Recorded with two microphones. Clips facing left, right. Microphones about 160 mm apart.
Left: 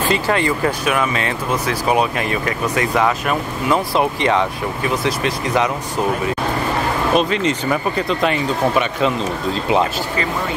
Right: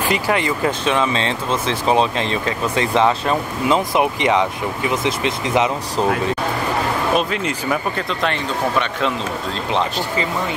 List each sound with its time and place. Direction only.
0.0 s speech: 15° right (ahead or behind)
7.2 s speech: centre (ahead or behind)